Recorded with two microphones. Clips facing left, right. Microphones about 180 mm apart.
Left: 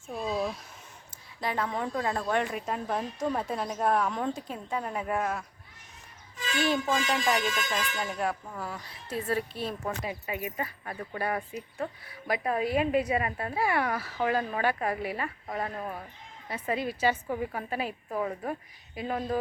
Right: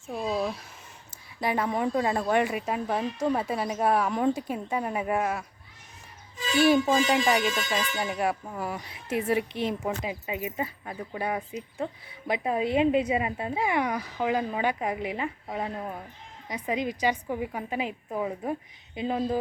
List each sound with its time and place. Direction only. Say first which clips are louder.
0.1 s speech: right 2 dB; 5° right (ahead or behind)
6.6 s speech: right 6 dB; 10° right (ahead or behind)